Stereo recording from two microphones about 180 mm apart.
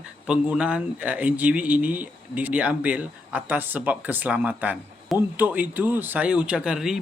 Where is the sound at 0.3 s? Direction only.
5° right (ahead or behind).